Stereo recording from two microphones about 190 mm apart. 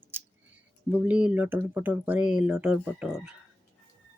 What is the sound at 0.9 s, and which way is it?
Speech, 10° right (ahead or behind).